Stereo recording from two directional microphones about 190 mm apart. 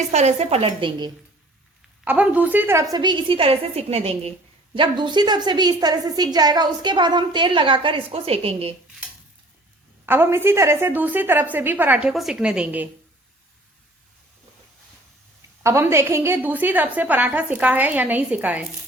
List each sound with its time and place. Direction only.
0.1 s speech: 35° right (ahead or behind)
2.0 s a woman's voice: 10° right (ahead or behind); by 8.7 s 30° right (ahead or behind)
10.1 s a woman's voice: 10° right (ahead or behind)
15.6 s a woman's voice: 15° right (ahead or behind)